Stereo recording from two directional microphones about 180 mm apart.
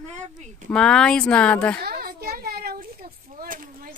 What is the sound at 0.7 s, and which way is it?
Speech, 5° left (ahead or behind).